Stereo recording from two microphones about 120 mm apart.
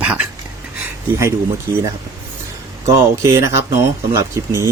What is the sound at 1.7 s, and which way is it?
Speech, 40° right (ahead or behind).